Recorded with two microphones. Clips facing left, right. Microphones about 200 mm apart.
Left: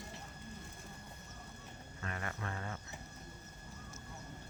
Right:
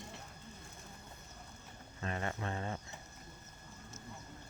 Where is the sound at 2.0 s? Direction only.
25° right (ahead or behind).